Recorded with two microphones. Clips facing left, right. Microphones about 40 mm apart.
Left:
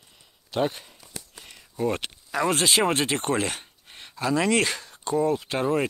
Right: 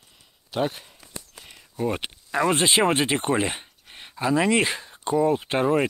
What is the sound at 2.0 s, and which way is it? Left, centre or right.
Speech, centre.